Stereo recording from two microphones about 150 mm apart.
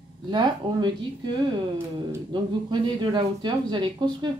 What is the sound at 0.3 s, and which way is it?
Speech, 30° right (ahead or behind).